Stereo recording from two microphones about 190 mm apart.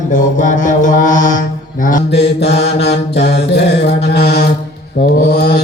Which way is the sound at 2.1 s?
60° left (ahead or behind).